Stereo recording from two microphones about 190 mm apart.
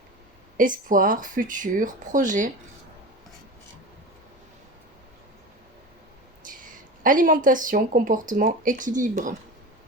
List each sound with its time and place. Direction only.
0.5 s speech: 45° right (ahead or behind)
7.0 s speech: 45° right (ahead or behind)